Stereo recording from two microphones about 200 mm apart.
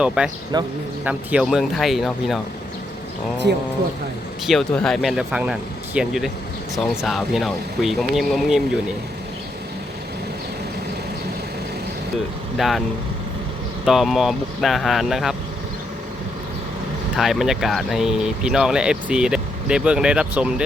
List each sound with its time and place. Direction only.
0.2 s speech: 5° right (ahead or behind)
0.5 s speech: 20° right (ahead or behind)
1.0 s speech: 5° right (ahead or behind)
3.5 s speech: 55° right (ahead or behind)
4.4 s speech: centre (ahead or behind)
12.5 s speech: centre (ahead or behind)
13.8 s speech: centre (ahead or behind)
17.2 s speech: centre (ahead or behind)